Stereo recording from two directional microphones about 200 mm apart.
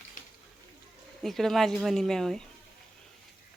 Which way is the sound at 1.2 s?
Centre (ahead or behind).